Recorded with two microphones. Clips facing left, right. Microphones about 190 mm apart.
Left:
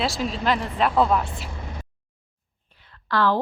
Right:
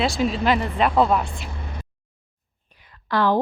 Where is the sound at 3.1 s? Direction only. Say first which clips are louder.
Right 1 dB; 15° right (ahead or behind).